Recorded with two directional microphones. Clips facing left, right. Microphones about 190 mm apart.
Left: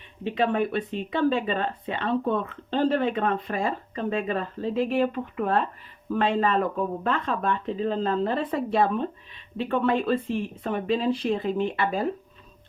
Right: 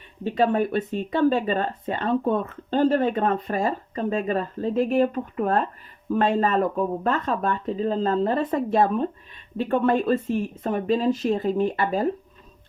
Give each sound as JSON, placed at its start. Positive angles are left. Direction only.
{"t": 0.3, "sound": "speech", "side_deg": -40}